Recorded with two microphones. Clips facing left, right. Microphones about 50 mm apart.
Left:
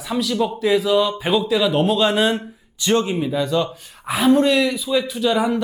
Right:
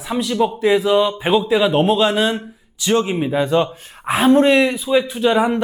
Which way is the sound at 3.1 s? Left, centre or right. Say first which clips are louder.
Right 3 dB; right.